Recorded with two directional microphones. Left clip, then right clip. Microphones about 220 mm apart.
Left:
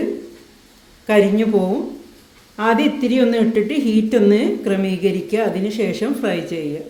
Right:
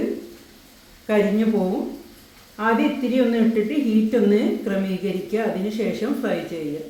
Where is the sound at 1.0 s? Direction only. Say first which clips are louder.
Left 5 dB; 40° left (ahead or behind).